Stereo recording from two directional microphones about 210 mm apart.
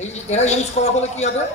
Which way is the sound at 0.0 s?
30° left (ahead or behind).